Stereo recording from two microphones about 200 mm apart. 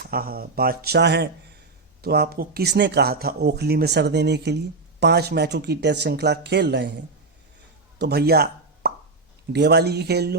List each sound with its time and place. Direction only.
0.1 s speech: 50° right (ahead or behind)
7.9 s speech: 55° right (ahead or behind)